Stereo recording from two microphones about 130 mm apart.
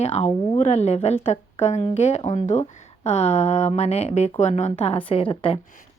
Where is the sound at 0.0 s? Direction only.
55° left (ahead or behind).